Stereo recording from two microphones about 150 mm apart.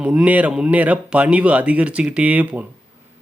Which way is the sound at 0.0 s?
5° right (ahead or behind).